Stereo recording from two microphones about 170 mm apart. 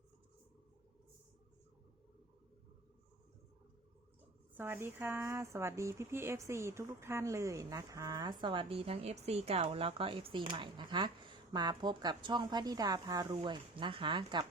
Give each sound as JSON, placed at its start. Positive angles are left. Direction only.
{"t": 4.5, "sound": "speech", "side_deg": -10}